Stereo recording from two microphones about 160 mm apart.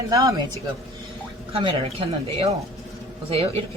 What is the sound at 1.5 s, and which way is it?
Speech, 35° right (ahead or behind).